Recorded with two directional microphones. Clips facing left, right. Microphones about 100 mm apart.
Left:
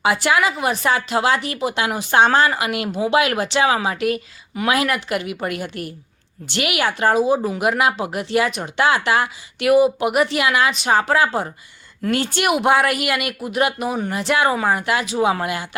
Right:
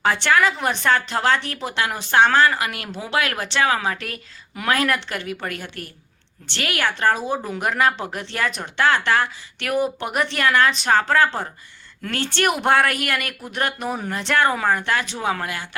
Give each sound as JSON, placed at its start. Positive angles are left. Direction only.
{"t": 0.0, "sound": "speech", "side_deg": 10}